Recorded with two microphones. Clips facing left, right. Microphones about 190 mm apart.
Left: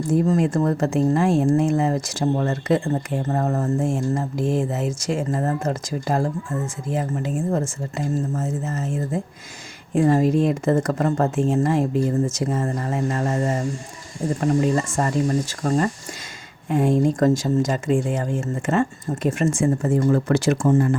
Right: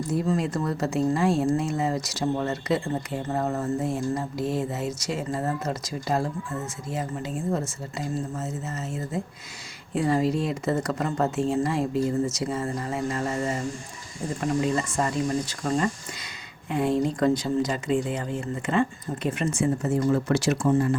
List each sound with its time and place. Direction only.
0.1 s speech: 45° left (ahead or behind)